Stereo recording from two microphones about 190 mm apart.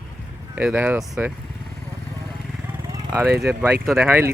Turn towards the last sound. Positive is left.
turn(degrees=-10)  # may be behind; listen again after turning